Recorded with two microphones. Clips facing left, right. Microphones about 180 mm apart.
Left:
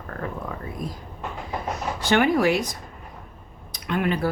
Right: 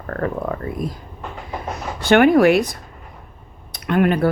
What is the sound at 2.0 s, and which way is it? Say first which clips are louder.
Speech: right 8 dB; 60° right (ahead or behind).